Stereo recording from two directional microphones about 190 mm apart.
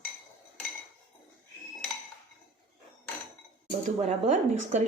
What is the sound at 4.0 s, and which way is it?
Speech, 35° right (ahead or behind).